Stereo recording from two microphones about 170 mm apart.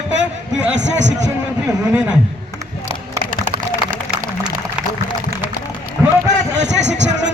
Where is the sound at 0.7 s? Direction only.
90° right.